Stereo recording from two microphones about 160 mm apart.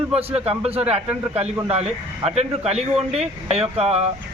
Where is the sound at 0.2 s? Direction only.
40° right (ahead or behind).